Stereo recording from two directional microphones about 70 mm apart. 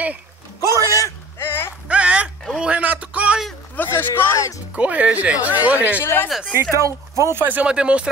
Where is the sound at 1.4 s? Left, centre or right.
Left.